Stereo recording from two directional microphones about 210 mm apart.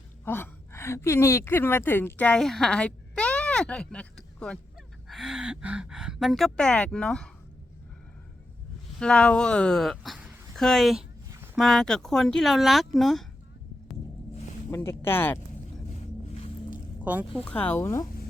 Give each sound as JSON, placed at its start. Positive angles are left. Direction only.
{"t": 0.3, "sound": "a woman's voice", "side_deg": 10}
{"t": 9.0, "sound": "speech", "side_deg": 5}
{"t": 14.7, "sound": "speech", "side_deg": 10}
{"t": 16.3, "sound": "music", "side_deg": 25}
{"t": 17.0, "sound": "speech", "side_deg": -10}
{"t": 17.4, "sound": "speech", "side_deg": 5}